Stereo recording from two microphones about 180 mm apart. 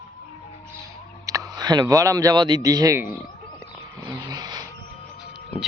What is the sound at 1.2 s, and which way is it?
Speech, 20° right (ahead or behind).